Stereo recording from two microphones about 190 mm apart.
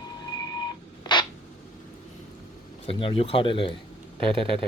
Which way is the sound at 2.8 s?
30° left (ahead or behind).